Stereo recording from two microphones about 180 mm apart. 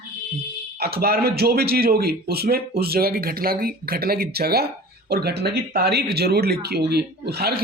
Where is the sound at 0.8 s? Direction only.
60° right (ahead or behind).